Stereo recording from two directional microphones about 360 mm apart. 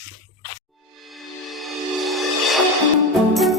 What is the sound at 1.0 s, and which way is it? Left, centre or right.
Music, centre.